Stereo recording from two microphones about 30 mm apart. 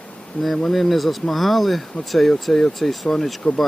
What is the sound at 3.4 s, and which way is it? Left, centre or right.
Speech, left.